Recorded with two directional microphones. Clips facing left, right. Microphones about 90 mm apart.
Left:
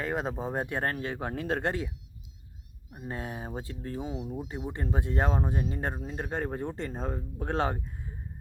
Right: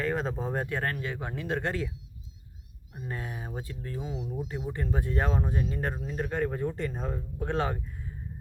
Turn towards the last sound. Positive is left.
turn(degrees=35)  # may be behind; listen again after turning